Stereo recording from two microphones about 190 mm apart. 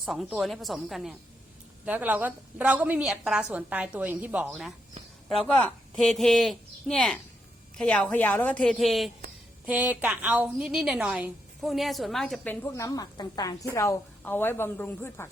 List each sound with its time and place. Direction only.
0.0 s a woman's voice: centre (ahead or behind)
5.5 s a woman's voice: 5° left (ahead or behind)
12.6 s a woman's voice: 15° left (ahead or behind)